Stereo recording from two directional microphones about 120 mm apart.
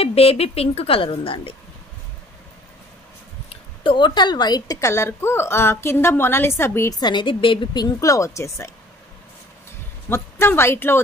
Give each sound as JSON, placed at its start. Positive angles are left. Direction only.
{"t": 0.0, "sound": "speech", "side_deg": 55}
{"t": 3.4, "sound": "a woman's voice", "side_deg": 45}
{"t": 7.0, "sound": "speech", "side_deg": 40}
{"t": 10.0, "sound": "a woman's voice", "side_deg": 20}